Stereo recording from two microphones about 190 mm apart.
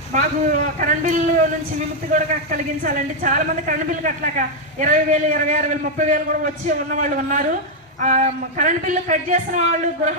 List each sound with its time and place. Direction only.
0.1 s a man's voice: 45° right (ahead or behind)